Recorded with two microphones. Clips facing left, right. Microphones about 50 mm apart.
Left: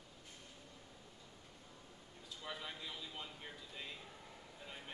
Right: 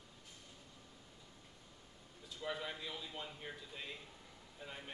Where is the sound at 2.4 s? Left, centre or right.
Centre.